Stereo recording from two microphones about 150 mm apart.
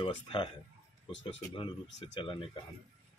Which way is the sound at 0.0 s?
35° left (ahead or behind).